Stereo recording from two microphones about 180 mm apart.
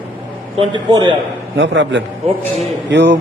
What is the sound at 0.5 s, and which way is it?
Speech, 30° right (ahead or behind).